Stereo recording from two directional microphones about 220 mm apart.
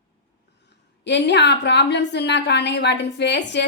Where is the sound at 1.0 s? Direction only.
50° left (ahead or behind).